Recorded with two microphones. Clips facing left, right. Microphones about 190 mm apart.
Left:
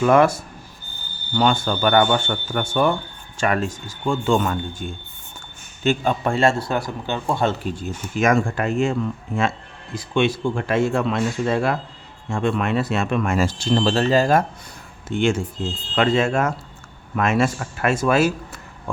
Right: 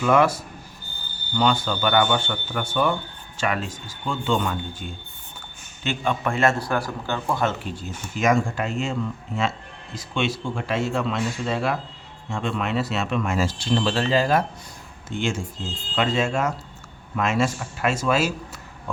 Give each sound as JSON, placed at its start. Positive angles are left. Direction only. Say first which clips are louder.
{"t": 0.0, "sound": "speech", "louder": "left 3 dB", "side_deg": 45}
{"t": 1.4, "sound": "speech", "louder": "left 3 dB", "side_deg": 50}
{"t": 6.2, "sound": "speech", "louder": "left 3 dB", "side_deg": 30}
{"t": 7.6, "sound": "speech", "louder": "left 5 dB", "side_deg": 55}
{"t": 15.1, "sound": "speech", "louder": "left 6 dB", "side_deg": 60}